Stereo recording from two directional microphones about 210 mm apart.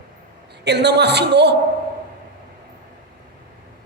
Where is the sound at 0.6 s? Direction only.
55° right (ahead or behind).